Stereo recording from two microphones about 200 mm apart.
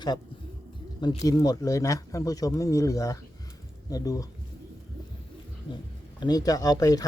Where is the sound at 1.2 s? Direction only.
20° left (ahead or behind).